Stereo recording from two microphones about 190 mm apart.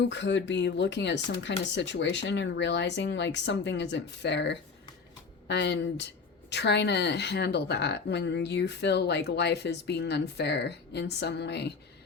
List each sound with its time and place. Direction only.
0.1 s a woman's voice: 65° left (ahead or behind)